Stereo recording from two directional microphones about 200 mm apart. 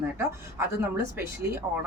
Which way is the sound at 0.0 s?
10° right (ahead or behind).